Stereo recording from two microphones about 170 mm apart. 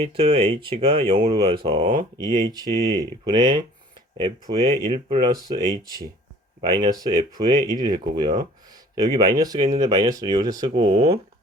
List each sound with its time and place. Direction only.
0.0 s speech: 35° right (ahead or behind)
1.6 s speech: 35° right (ahead or behind)
2.0 s speech: 20° right (ahead or behind)